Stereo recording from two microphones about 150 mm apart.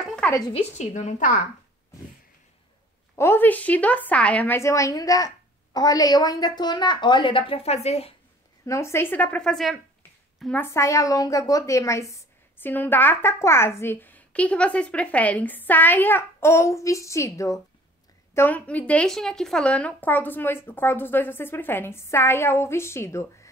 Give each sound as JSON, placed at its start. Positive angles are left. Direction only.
{"t": 0.0, "sound": "a sound", "side_deg": 5}
{"t": 0.5, "sound": "a woman's voice", "side_deg": 45}
{"t": 3.2, "sound": "speech", "side_deg": 15}
{"t": 8.6, "sound": "speech", "side_deg": 20}
{"t": 10.4, "sound": "speech", "side_deg": 10}